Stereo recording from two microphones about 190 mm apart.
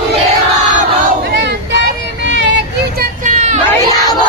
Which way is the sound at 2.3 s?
70° right (ahead or behind).